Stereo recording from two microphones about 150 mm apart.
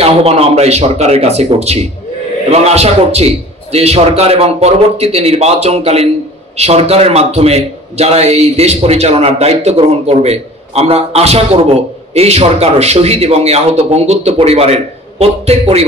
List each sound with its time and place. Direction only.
0.0 s a man's voice: 40° right (ahead or behind)